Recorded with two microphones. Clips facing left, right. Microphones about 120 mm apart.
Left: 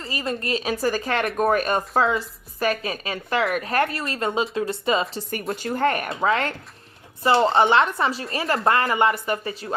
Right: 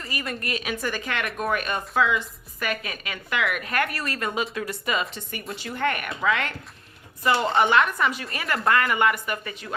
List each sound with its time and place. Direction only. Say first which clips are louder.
0.0 s speech: left 4 dB; 30° left (ahead or behind)